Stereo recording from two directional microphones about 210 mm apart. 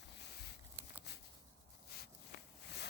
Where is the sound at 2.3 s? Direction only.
55° left (ahead or behind).